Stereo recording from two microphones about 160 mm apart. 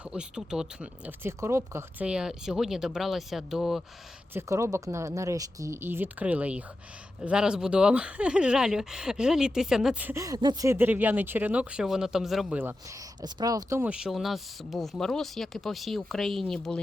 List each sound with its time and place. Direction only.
0.0 s speech: 5° right (ahead or behind)
4.4 s speech: 20° right (ahead or behind)
13.8 s speech: 5° right (ahead or behind)